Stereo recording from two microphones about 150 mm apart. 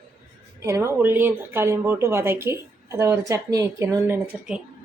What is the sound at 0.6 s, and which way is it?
Speech, 20° right (ahead or behind).